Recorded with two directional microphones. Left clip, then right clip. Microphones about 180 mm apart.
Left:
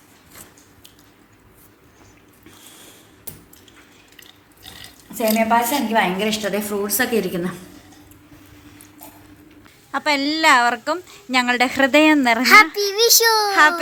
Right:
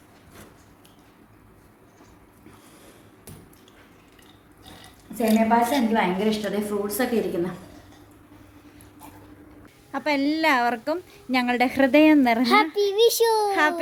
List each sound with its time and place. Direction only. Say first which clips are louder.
4.2 s a sound: left 8 dB; 30° right (ahead or behind)
5.5 s a woman's voice: left 3 dB; 15° left (ahead or behind); by 7.5 s 35° left (ahead or behind)
9.9 s a woman's voice: left 4 dB; 5° right (ahead or behind)